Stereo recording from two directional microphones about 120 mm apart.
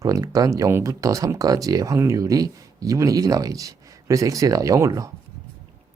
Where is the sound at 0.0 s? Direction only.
30° right (ahead or behind).